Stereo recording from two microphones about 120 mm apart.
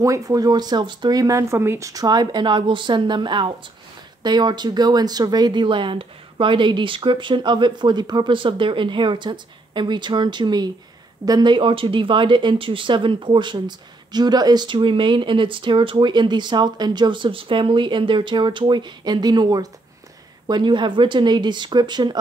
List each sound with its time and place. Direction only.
0.0 s speech: 30° right (ahead or behind)